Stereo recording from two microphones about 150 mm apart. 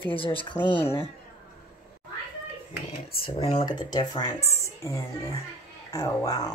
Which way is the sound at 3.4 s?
40° left (ahead or behind).